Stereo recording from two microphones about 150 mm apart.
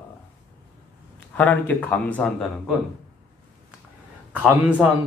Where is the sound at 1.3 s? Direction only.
10° left (ahead or behind).